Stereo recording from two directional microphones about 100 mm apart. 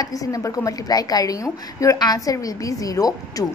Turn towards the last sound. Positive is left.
turn(degrees=35)  # may be behind; listen again after turning